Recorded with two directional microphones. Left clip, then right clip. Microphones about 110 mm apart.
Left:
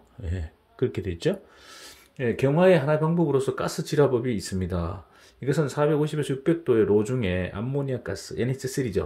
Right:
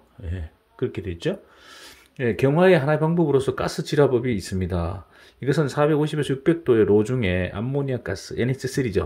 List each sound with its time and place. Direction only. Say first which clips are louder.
0.2 s speech: even; centre (ahead or behind)
1.7 s a sound: right 2 dB; 20° right (ahead or behind)
2.1 s speech: right 3 dB; 45° right (ahead or behind)
5.4 s speech: right 3 dB; 50° right (ahead or behind)